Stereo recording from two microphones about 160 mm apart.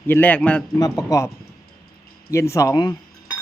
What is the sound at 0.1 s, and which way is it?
Speech, 10° left (ahead or behind).